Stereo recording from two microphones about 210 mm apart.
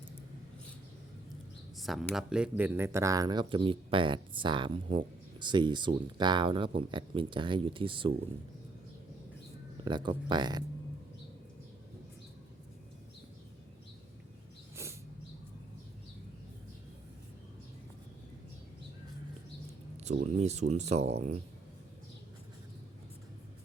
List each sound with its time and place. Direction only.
1.7 s speech: centre (ahead or behind); by 8.1 s 25° right (ahead or behind)
9.8 s speech: 20° right (ahead or behind)
20.2 s speech: 30° right (ahead or behind)